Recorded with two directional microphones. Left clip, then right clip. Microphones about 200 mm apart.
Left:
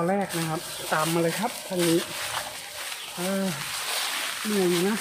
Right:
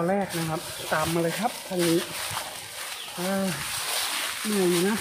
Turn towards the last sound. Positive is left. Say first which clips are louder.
# even
turn(degrees=0)  # may be behind; listen again after turning